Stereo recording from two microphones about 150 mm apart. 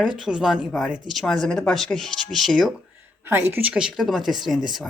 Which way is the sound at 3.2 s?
15° right (ahead or behind).